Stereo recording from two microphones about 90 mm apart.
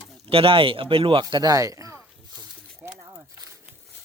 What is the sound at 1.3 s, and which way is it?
Speech, 45° right (ahead or behind).